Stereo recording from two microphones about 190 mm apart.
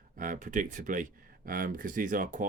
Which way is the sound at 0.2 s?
45° right (ahead or behind).